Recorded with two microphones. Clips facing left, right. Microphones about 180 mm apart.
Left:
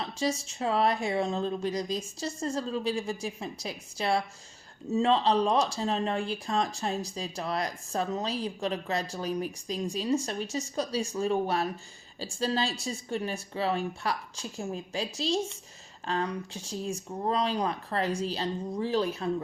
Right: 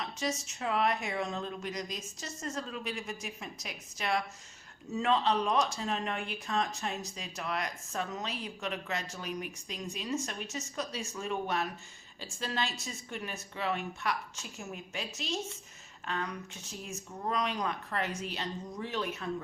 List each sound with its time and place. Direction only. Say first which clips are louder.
0.0 s speech: left 5 dB; 30° left (ahead or behind)